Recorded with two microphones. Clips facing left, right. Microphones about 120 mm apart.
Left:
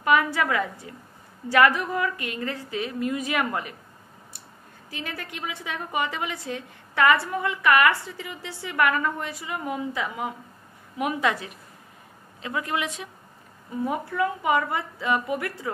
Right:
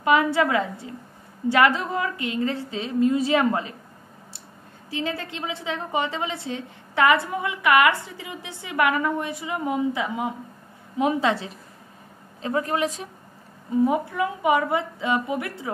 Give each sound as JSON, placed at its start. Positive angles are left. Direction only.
{"t": 0.0, "sound": "a woman's voice", "side_deg": -20}
{"t": 4.9, "sound": "a woman's voice", "side_deg": -25}
{"t": 13.8, "sound": "a woman's voice", "side_deg": -20}